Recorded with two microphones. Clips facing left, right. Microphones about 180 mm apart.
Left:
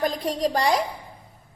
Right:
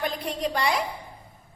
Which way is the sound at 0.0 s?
40° left (ahead or behind).